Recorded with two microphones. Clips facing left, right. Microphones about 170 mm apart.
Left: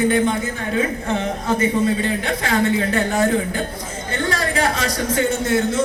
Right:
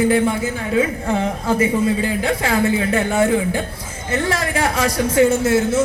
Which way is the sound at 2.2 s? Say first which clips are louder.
Right 2 dB; 30° right (ahead or behind).